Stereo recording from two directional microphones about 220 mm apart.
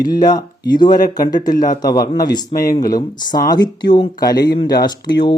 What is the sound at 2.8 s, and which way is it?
Speech, 15° left (ahead or behind).